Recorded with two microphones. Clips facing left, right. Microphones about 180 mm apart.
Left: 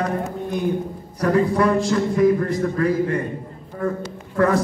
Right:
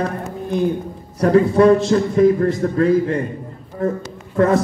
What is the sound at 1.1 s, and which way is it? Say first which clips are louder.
A man's voice: right 5 dB; 25° right (ahead or behind).